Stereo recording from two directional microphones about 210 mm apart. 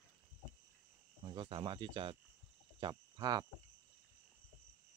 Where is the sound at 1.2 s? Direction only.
20° right (ahead or behind).